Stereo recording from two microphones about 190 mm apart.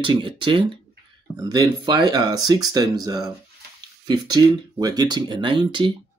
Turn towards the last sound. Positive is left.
turn(degrees=-25)  # may be behind; listen again after turning